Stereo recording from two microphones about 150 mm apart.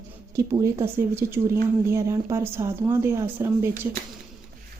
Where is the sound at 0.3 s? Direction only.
20° right (ahead or behind).